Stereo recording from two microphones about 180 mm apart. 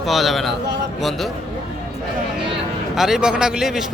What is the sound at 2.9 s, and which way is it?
Speech, centre (ahead or behind).